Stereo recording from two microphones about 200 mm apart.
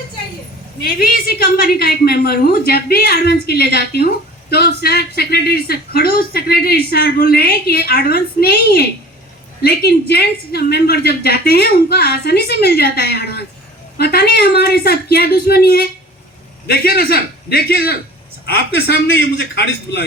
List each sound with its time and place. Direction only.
0.9 s a woman's voice: 45° left (ahead or behind)